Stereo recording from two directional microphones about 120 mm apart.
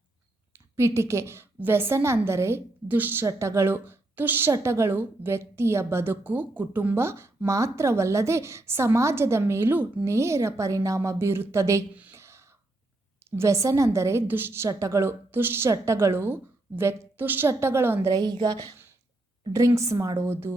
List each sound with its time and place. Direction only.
0.5 s a woman's voice: 25° right (ahead or behind)
11.9 s a sound: 20° right (ahead or behind)
13.3 s a woman's voice: 25° right (ahead or behind)
18.1 s a woman's voice: 35° right (ahead or behind)
19.5 s a woman's voice: 25° right (ahead or behind)